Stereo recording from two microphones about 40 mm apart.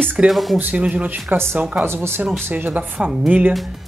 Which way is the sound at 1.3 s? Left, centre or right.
Right.